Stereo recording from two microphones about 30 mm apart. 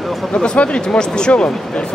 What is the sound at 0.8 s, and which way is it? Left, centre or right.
Speech, left.